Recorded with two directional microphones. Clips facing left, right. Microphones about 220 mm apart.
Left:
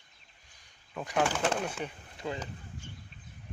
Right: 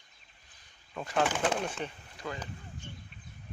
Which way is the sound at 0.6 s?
10° left (ahead or behind).